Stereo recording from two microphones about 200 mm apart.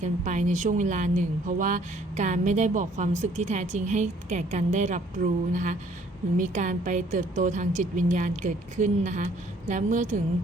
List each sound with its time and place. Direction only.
0.0 s a woman's voice: 35° right (ahead or behind)